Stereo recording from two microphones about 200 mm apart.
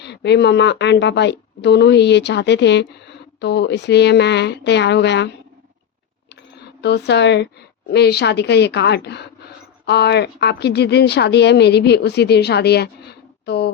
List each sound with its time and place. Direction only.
0.0 s speech: 60° left (ahead or behind)
6.8 s speech: 60° left (ahead or behind)